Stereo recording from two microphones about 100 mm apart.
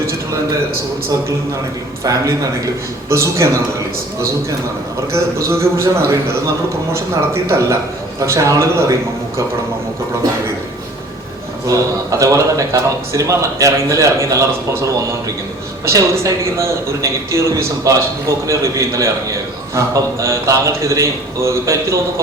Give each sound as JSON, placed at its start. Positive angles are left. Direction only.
{"t": 2.0, "sound": "a man's voice", "side_deg": -35}
{"t": 5.1, "sound": "a man's voice", "side_deg": -25}
{"t": 11.7, "sound": "a man's voice", "side_deg": -30}